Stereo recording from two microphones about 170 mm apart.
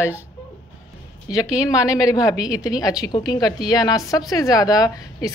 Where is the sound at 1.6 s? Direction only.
20° left (ahead or behind).